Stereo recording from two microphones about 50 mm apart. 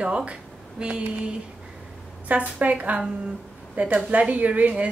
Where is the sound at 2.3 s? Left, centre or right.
Right.